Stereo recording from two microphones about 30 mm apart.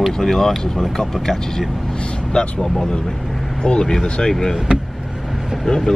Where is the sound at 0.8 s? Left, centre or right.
Centre.